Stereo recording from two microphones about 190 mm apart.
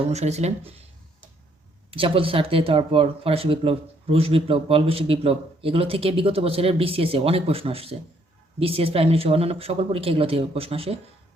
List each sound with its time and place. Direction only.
0.0 s speech: 35° right (ahead or behind)
1.9 s speech: 30° right (ahead or behind)